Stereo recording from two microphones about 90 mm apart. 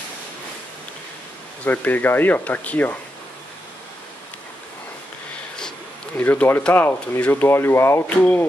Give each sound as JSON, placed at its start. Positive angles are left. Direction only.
{"t": 1.6, "sound": "speech", "side_deg": 15}
{"t": 6.1, "sound": "speech", "side_deg": 20}
{"t": 8.2, "sound": "speech", "side_deg": 20}